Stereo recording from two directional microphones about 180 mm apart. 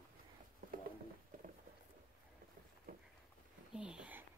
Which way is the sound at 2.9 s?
55° right (ahead or behind).